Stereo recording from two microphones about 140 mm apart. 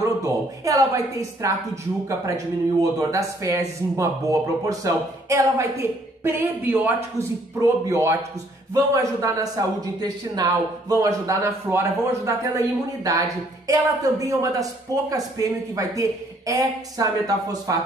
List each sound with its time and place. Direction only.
0.0 s a man's voice: 25° right (ahead or behind)